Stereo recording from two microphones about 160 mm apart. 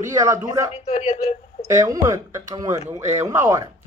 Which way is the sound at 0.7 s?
40° left (ahead or behind).